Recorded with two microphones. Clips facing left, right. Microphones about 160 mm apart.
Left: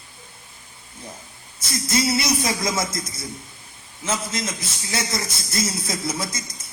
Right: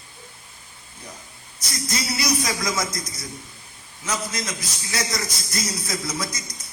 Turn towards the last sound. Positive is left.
turn(degrees=25)  # may be behind; listen again after turning